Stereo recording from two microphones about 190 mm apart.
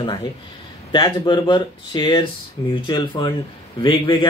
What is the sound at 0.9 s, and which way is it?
Speech, 25° left (ahead or behind).